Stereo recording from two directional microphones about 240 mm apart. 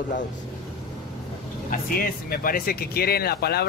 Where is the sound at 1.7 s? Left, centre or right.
Left.